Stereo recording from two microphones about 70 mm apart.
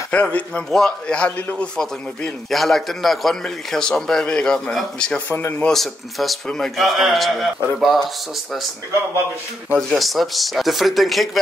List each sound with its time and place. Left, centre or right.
0.1 s speech: centre
0.7 s a man's voice: centre
2.5 s a man's voice: centre
9.9 s a man's voice: centre